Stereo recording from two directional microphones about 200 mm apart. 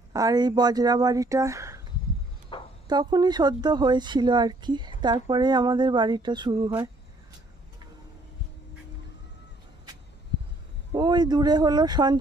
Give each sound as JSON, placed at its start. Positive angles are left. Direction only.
{"t": 0.1, "sound": "speech", "side_deg": -20}
{"t": 2.5, "sound": "a sound", "side_deg": 25}
{"t": 2.9, "sound": "speech", "side_deg": -20}
{"t": 10.9, "sound": "speech", "side_deg": -20}